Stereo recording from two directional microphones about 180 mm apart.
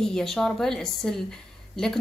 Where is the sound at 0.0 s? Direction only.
5° left (ahead or behind).